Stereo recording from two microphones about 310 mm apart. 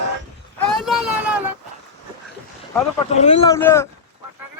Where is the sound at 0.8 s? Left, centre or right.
Centre.